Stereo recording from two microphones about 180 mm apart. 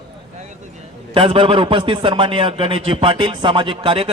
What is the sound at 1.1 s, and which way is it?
A man's voice, 30° right (ahead or behind).